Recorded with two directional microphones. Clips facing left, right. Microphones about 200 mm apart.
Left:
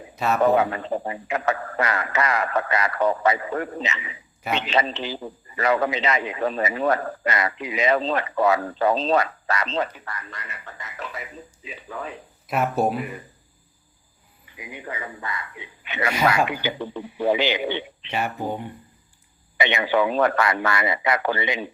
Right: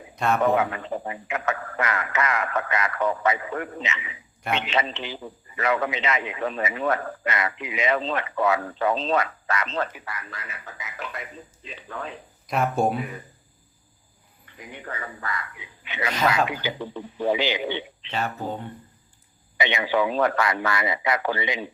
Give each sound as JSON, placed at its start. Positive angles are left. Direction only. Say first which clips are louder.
{"t": 0.4, "sound": "a man's voice", "louder": "left 3 dB", "side_deg": 35}
{"t": 9.9, "sound": "speech", "louder": "even", "side_deg": -10}
{"t": 14.4, "sound": "speech", "louder": "left 2 dB", "side_deg": 10}
{"t": 15.8, "sound": "speech", "louder": "left 2 dB", "side_deg": 50}
{"t": 18.1, "sound": "speech", "louder": "left 2 dB", "side_deg": 15}
{"t": 19.5, "sound": "speech", "louder": "left 2 dB", "side_deg": 60}